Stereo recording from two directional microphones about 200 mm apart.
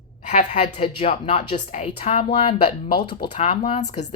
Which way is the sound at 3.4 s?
35° left (ahead or behind).